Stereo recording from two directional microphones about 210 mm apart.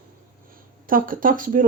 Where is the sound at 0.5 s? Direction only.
40° right (ahead or behind).